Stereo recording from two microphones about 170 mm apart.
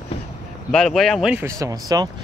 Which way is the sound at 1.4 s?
20° right (ahead or behind).